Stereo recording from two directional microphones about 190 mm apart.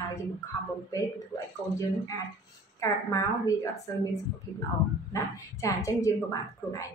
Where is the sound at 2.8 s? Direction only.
15° left (ahead or behind).